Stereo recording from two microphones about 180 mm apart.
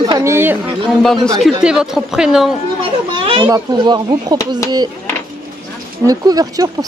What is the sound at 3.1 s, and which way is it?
Speech, 30° right (ahead or behind).